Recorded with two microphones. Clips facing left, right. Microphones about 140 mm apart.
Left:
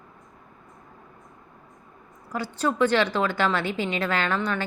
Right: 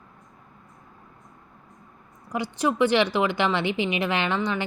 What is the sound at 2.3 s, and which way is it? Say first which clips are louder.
A woman's voice: right 1 dB; 15° right (ahead or behind).